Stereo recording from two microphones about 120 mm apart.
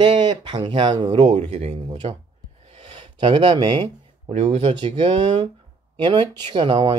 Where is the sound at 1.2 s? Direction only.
55° right (ahead or behind).